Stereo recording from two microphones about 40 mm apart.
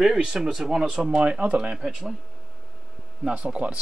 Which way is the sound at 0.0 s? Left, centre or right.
Centre.